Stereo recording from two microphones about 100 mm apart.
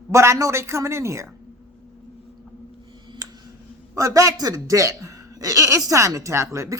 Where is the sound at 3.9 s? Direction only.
35° right (ahead or behind).